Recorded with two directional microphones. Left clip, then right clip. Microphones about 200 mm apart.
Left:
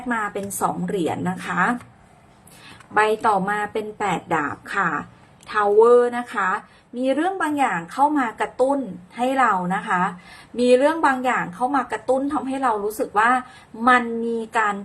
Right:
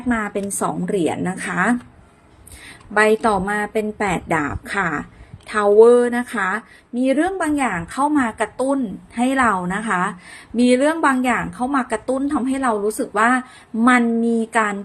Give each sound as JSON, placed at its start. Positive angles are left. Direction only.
{"t": 0.1, "sound": "a woman's voice", "side_deg": -25}
{"t": 2.9, "sound": "a woman's voice", "side_deg": -25}